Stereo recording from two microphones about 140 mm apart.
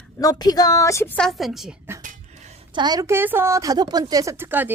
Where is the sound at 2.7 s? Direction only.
30° right (ahead or behind).